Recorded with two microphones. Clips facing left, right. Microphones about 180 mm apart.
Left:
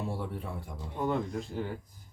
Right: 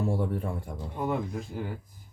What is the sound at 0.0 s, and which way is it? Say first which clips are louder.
Speech: right 7 dB; 50° right (ahead or behind).